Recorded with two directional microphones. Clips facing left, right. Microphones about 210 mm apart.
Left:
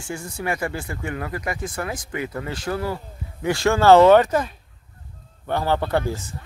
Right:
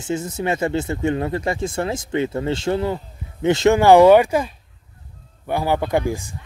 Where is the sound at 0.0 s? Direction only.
20° right (ahead or behind).